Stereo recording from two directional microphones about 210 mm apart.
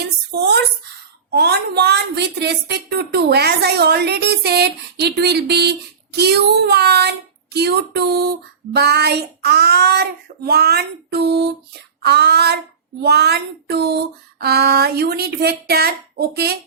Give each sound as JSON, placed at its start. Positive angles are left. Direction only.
{"t": 0.0, "sound": "a sound", "side_deg": -55}
{"t": 7.5, "sound": "child singing", "side_deg": -50}
{"t": 13.0, "sound": "speech", "side_deg": -50}